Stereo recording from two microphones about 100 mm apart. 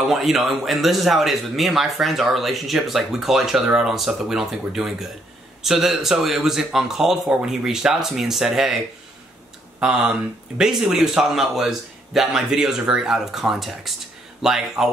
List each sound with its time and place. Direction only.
0.1 s speech: centre (ahead or behind)
9.8 s speech: 10° right (ahead or behind)